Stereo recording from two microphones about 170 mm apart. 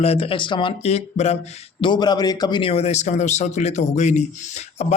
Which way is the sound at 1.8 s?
25° left (ahead or behind).